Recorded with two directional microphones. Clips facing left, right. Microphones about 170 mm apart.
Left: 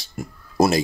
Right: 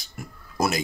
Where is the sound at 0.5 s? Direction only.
30° left (ahead or behind).